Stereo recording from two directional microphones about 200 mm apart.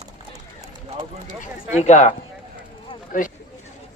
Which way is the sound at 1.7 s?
35° left (ahead or behind).